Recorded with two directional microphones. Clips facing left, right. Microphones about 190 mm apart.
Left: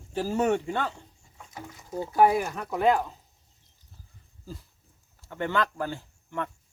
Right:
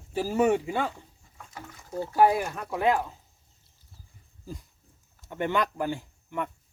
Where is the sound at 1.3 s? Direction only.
15° left (ahead or behind).